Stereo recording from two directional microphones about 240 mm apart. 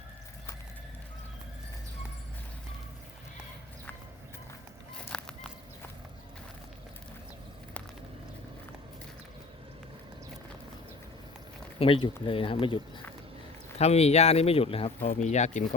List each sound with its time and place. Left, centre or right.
5.0 s fowl: centre
11.8 s speech: left